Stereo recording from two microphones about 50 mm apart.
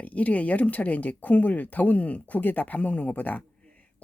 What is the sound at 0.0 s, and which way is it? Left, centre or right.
A woman's voice, left.